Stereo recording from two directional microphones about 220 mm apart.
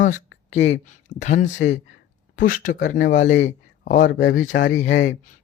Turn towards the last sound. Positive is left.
turn(degrees=55)  # may be behind; listen again after turning